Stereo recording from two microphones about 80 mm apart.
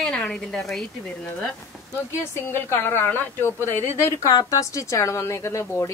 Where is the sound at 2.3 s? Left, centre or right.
Left.